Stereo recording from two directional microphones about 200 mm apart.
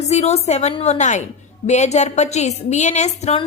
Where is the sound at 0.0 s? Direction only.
35° left (ahead or behind).